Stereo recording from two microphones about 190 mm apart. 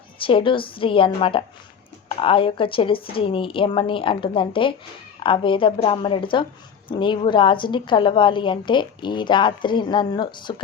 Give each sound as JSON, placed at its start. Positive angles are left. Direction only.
{"t": 0.2, "sound": "a woman's voice", "side_deg": 25}